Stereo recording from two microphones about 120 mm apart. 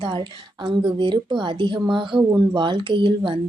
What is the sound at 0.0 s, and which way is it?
A woman's voice, 45° right (ahead or behind).